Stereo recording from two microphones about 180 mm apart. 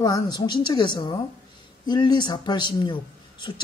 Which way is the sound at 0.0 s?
20° left (ahead or behind).